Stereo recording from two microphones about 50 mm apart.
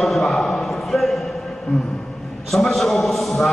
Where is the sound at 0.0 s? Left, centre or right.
Centre.